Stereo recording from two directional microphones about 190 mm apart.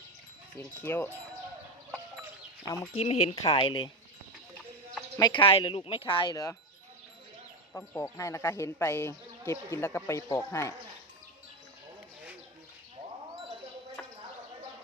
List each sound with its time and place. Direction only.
0.8 s speech: 10° left (ahead or behind)
2.6 s speech: 15° left (ahead or behind)
2.9 s speech: 35° left (ahead or behind)
5.1 s speech: 20° left (ahead or behind)
7.7 s speech: 15° left (ahead or behind)